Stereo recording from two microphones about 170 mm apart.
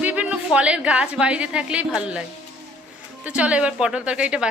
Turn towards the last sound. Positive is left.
turn(degrees=-5)  # may be behind; listen again after turning